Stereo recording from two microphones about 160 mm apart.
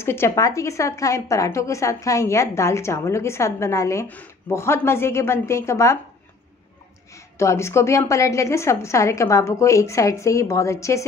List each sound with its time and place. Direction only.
0.0 s a woman's voice: 15° left (ahead or behind)
7.3 s a woman's voice: 15° left (ahead or behind)